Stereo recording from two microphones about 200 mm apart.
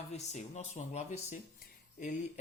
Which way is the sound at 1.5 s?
45° left (ahead or behind).